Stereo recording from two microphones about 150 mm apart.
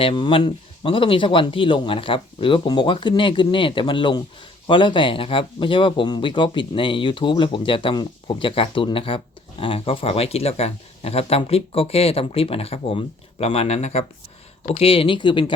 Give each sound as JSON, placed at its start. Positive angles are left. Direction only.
{"t": 0.0, "sound": "speech", "side_deg": 35}